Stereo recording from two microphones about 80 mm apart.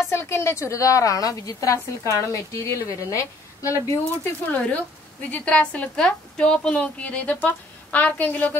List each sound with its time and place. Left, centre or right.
0.0 s a woman's voice: left
4.5 s a woman's voice: centre